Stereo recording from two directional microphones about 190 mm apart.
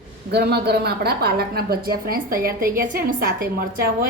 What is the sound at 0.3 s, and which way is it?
A woman's voice, 60° right (ahead or behind).